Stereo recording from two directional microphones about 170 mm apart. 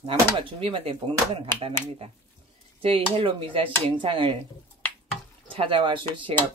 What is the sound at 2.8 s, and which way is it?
Speech, 35° right (ahead or behind).